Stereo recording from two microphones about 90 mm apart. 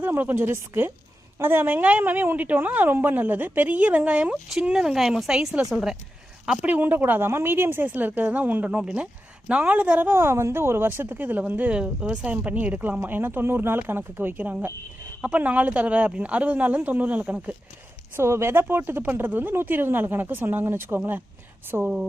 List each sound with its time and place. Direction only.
0.0 s speech: 25° right (ahead or behind)
10.1 s speech: 25° right (ahead or behind)
18.2 s speech: 30° right (ahead or behind)